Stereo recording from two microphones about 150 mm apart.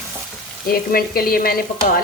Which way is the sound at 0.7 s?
85° left.